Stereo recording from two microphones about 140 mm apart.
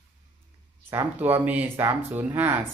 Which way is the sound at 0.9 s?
15° right (ahead or behind).